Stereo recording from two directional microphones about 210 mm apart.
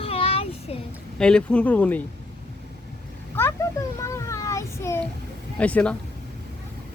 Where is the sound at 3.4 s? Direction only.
10° left (ahead or behind).